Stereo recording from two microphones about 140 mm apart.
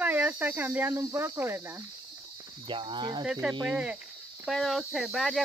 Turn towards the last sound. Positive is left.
turn(degrees=0)  # may be behind; listen again after turning